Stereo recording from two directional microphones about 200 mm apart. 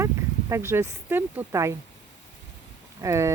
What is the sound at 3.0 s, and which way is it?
Speech, 15° right (ahead or behind).